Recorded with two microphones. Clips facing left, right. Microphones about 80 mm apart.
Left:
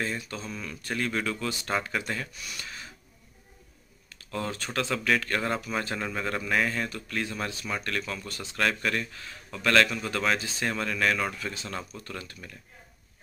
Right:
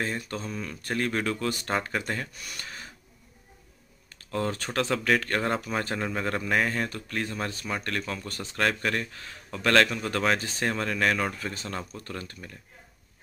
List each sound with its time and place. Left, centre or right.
0.0 s speech: right
4.3 s speech: right
7.6 s speech: right
8.1 s speech: right